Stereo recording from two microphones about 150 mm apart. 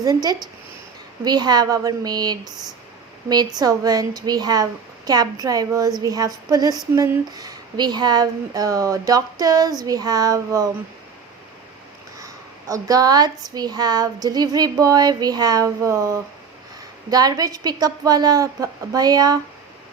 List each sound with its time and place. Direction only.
0.0 s speech: 25° right (ahead or behind)
12.2 s speech: 20° right (ahead or behind)